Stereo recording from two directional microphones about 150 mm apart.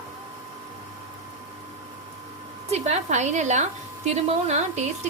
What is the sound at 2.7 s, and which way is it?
A woman's voice, 45° right (ahead or behind).